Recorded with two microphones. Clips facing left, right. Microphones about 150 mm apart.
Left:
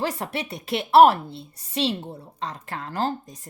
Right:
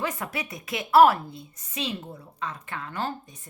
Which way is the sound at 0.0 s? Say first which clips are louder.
Left 3 dB; 35° left (ahead or behind).